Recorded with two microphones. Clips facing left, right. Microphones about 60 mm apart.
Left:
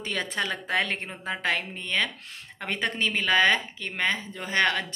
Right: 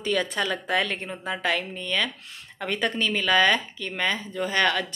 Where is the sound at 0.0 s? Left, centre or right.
Left.